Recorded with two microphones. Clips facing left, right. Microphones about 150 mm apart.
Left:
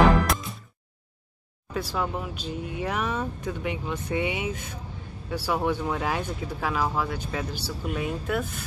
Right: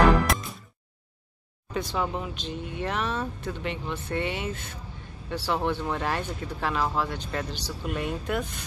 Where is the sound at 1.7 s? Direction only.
5° left (ahead or behind).